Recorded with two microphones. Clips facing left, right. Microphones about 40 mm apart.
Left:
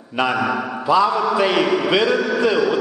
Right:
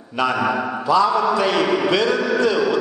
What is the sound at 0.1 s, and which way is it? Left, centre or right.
Speech, centre.